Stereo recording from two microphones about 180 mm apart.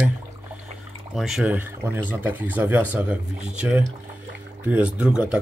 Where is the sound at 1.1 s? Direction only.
Centre (ahead or behind).